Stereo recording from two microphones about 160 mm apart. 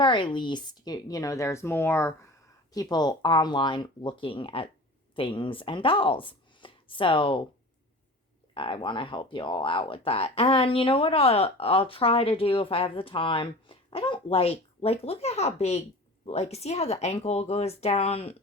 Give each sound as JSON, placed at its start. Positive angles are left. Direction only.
{"t": 0.0, "sound": "a woman's voice", "side_deg": 30}
{"t": 8.5, "sound": "speech", "side_deg": 30}